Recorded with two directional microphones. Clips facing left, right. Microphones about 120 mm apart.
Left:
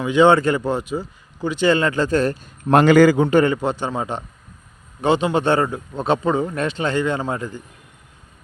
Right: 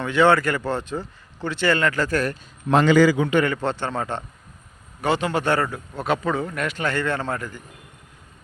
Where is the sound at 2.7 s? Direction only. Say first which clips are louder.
Left 4 dB; 55° left (ahead or behind); by 3.4 s 40° left (ahead or behind).